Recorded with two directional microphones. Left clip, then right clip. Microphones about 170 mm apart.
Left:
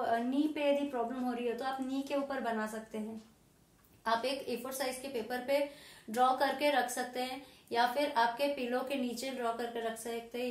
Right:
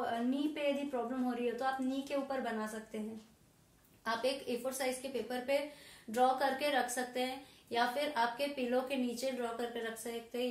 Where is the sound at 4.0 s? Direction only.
20° left (ahead or behind).